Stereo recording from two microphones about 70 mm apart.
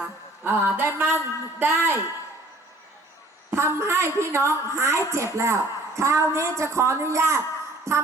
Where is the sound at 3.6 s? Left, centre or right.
Right.